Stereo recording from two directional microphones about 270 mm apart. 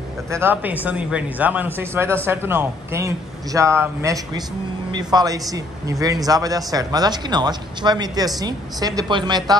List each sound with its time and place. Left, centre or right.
0.3 s speech: centre